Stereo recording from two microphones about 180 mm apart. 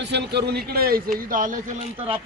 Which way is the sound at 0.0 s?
70° right (ahead or behind).